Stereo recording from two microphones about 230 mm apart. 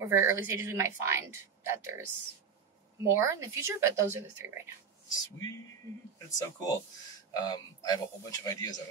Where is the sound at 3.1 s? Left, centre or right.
Centre.